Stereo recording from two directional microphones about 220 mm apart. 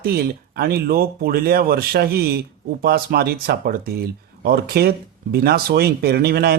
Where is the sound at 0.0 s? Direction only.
45° right (ahead or behind).